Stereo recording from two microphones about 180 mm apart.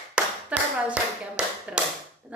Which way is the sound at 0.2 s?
5° right (ahead or behind).